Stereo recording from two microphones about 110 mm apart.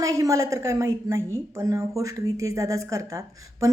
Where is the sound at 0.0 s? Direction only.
30° right (ahead or behind).